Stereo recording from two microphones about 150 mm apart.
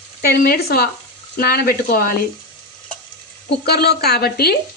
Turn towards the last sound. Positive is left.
turn(degrees=90)